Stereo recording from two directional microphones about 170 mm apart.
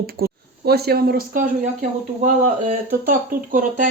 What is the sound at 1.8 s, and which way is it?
Speech, 50° right (ahead or behind).